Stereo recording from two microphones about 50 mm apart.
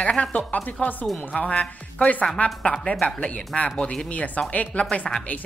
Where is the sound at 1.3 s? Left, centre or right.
Left.